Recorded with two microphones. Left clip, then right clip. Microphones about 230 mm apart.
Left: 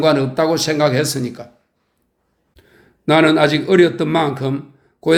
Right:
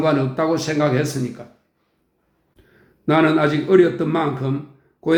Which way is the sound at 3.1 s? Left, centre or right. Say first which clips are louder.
Left 4 dB; left.